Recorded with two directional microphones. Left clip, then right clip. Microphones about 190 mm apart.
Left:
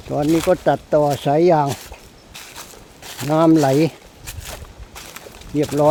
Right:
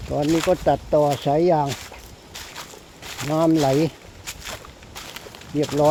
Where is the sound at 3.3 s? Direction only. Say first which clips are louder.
Left 5 dB; 35° left (ahead or behind).